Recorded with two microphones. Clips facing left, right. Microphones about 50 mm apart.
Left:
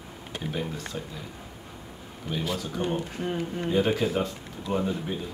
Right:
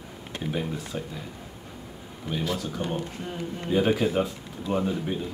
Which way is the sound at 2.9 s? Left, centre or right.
Left.